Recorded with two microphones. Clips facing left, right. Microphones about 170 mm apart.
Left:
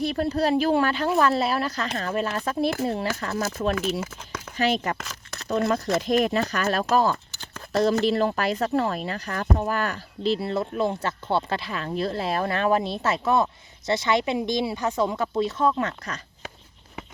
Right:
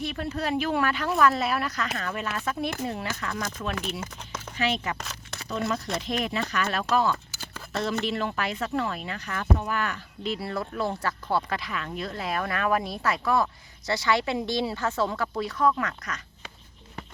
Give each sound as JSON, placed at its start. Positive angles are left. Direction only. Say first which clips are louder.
{"t": 0.0, "sound": "speech", "louder": "left 7 dB", "side_deg": 35}
{"t": 4.5, "sound": "speech", "louder": "left 4 dB", "side_deg": 40}